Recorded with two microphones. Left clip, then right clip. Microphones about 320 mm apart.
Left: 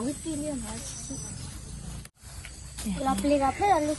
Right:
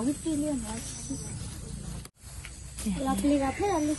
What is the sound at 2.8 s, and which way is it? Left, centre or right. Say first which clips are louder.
Speech: left 2 dB; centre.